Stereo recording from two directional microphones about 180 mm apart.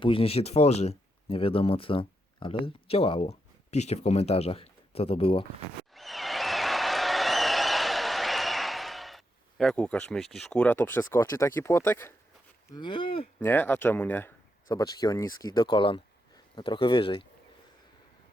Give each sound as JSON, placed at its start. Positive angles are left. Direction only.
{"t": 0.0, "sound": "speech", "side_deg": 30}
{"t": 5.9, "sound": "applause", "side_deg": 0}
{"t": 12.7, "sound": "speech", "side_deg": 25}
{"t": 13.4, "sound": "speech", "side_deg": 10}